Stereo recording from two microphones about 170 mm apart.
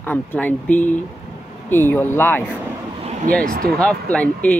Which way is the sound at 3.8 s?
5° left (ahead or behind).